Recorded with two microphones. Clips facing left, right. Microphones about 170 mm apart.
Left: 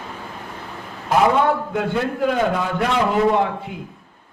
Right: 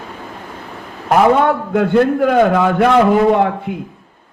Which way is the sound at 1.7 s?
60° right (ahead or behind).